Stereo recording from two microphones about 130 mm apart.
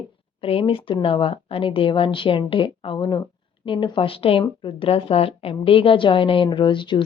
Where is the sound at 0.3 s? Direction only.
45° left (ahead or behind).